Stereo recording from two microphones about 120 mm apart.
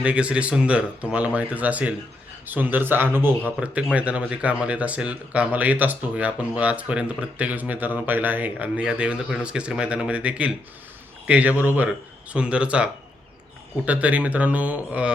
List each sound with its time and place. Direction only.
0.0 s speech: 10° right (ahead or behind)